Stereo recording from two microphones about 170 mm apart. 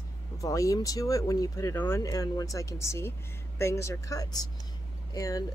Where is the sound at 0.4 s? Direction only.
20° left (ahead or behind).